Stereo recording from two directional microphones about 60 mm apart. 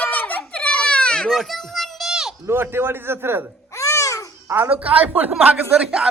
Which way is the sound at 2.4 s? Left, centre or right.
Right.